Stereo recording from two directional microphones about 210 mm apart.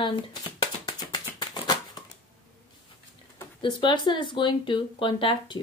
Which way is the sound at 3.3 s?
20° left (ahead or behind).